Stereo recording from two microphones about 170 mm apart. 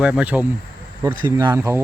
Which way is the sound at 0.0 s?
5° right (ahead or behind).